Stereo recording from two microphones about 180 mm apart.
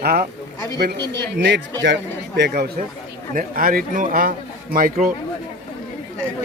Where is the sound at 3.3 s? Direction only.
50° right (ahead or behind).